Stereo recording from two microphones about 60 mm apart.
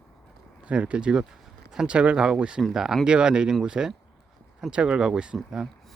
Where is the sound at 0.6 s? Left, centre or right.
Centre.